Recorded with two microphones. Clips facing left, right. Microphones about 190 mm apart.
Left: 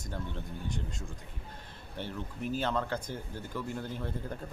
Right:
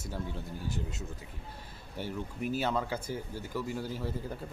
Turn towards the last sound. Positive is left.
turn(degrees=-5)  # may be behind; listen again after turning